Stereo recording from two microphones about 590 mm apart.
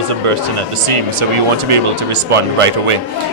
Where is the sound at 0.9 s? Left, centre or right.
Right.